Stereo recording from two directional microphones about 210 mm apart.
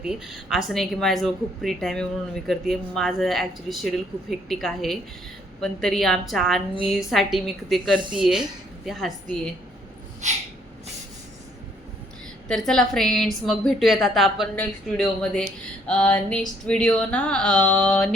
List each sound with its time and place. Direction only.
0.0 s a woman's voice: centre (ahead or behind)
10.2 s a sound: 35° right (ahead or behind)
12.5 s a woman's voice: 5° left (ahead or behind)